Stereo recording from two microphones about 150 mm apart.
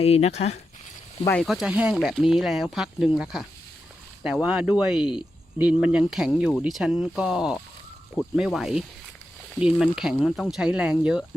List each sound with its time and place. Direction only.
0.0 s speech: 45° left (ahead or behind)
1.3 s speech: centre (ahead or behind)
4.2 s speech: 5° right (ahead or behind)